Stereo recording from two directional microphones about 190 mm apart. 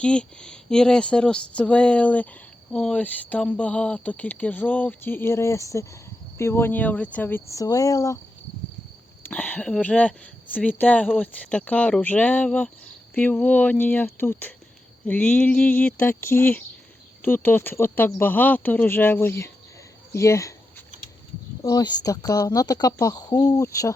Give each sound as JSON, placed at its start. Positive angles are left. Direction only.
{"t": 0.0, "sound": "speech", "side_deg": 5}
{"t": 9.2, "sound": "speech", "side_deg": 10}
{"t": 20.1, "sound": "a sound", "side_deg": 15}
{"t": 21.6, "sound": "speech", "side_deg": 20}